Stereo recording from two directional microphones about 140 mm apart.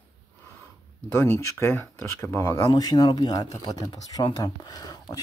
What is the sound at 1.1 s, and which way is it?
Speech, 20° left (ahead or behind).